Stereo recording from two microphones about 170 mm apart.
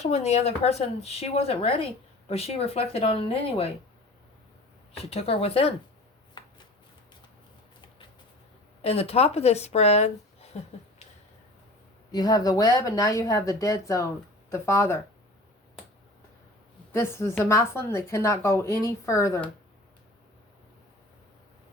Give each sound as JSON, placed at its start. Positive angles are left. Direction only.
{"t": 0.0, "sound": "speech", "side_deg": 40}
{"t": 5.1, "sound": "speech", "side_deg": 35}
{"t": 8.8, "sound": "speech", "side_deg": 35}
{"t": 12.1, "sound": "speech", "side_deg": 25}
{"t": 16.9, "sound": "speech", "side_deg": 15}